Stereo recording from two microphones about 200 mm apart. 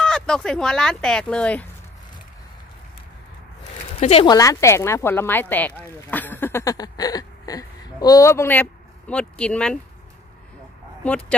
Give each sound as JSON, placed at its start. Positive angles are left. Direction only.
{"t": 0.0, "sound": "speech", "side_deg": 5}
{"t": 4.0, "sound": "speech", "side_deg": 30}
{"t": 4.4, "sound": "speech", "side_deg": 15}